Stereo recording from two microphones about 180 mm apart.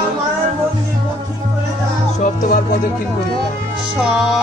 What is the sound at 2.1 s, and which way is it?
Music, 45° left (ahead or behind).